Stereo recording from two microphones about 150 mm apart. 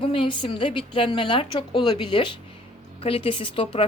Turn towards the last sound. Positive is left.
turn(degrees=35)  # may be behind; listen again after turning